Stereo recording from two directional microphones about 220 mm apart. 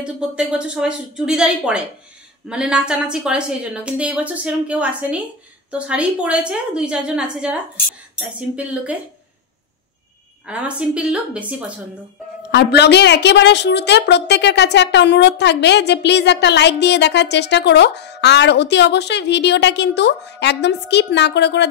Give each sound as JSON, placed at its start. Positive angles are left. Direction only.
{"t": 0.0, "sound": "a woman's voice", "side_deg": -5}
{"t": 10.4, "sound": "a woman's voice", "side_deg": -5}
{"t": 12.4, "sound": "a woman's voice", "side_deg": 50}